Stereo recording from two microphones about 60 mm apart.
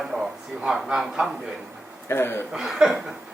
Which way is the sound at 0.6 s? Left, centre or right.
Centre.